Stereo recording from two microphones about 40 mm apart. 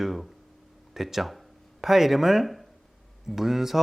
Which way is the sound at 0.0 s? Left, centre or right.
Centre.